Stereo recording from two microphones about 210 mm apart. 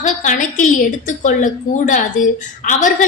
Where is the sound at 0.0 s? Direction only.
35° left (ahead or behind).